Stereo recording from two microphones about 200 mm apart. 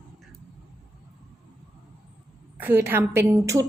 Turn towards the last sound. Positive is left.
turn(degrees=-15)  # may be behind; listen again after turning